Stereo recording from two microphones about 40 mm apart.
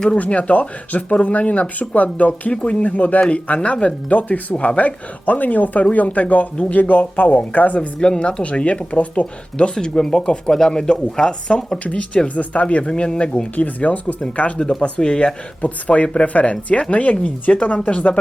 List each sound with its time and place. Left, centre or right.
0.2 s speech: left
7.8 s speech: left
9.7 s speech: centre
13.6 s speech: left
14.8 s speech: left